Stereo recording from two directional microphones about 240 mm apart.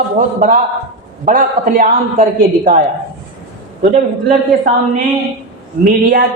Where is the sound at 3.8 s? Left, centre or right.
Right.